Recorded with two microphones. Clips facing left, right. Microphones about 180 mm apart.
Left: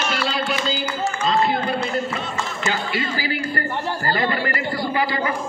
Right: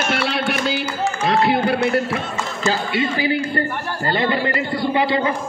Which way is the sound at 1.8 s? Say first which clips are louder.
Right 5 dB; 75° right (ahead or behind).